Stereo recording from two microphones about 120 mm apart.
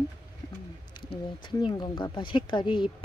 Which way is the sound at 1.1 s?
45° left (ahead or behind).